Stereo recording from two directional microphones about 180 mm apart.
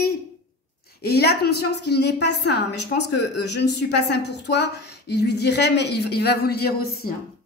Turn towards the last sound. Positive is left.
turn(degrees=60)  # may be behind; listen again after turning